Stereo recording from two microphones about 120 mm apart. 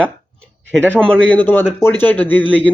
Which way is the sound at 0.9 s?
10° left (ahead or behind).